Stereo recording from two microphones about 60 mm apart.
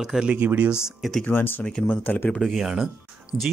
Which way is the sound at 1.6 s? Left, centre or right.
Centre.